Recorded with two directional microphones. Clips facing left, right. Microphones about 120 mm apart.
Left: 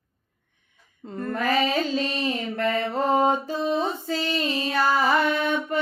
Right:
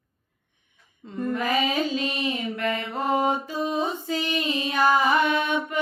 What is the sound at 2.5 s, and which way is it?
Mantra, 35° left (ahead or behind).